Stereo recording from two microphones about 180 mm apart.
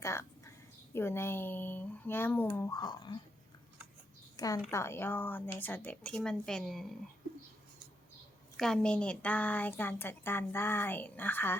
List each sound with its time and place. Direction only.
0.0 s a sound: 15° left (ahead or behind)
0.9 s speech: 15° left (ahead or behind)
4.4 s a woman's voice: 20° left (ahead or behind); by 6.8 s centre (ahead or behind)
8.5 s speech: 5° left (ahead or behind)